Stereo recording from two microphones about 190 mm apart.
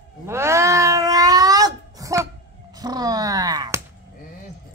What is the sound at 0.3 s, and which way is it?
Cat, 15° right (ahead or behind).